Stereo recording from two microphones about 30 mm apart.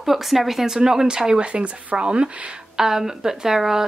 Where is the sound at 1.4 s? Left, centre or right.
Right.